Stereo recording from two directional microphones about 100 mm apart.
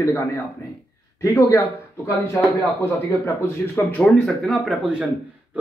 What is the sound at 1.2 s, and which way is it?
Speech, 30° left (ahead or behind).